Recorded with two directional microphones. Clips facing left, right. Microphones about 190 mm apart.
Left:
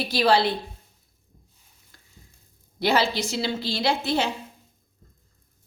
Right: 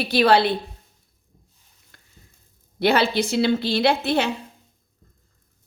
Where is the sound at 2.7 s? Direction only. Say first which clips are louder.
Right 3 dB; 60° right (ahead or behind).